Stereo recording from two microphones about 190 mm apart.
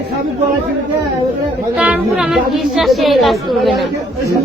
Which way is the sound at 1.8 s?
5° right (ahead or behind).